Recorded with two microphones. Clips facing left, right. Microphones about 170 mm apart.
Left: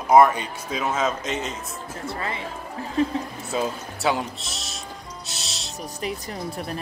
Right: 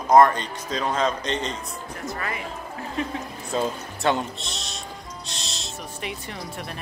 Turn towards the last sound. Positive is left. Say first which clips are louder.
# left 4 dB
turn(degrees=35)  # may be behind; listen again after turning